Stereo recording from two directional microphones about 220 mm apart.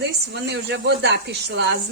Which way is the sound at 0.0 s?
50° right (ahead or behind).